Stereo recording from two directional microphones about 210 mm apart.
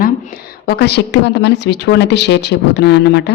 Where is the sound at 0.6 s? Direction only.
50° left (ahead or behind).